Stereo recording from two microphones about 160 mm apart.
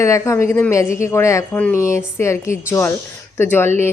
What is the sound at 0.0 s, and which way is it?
Speech, 20° left (ahead or behind).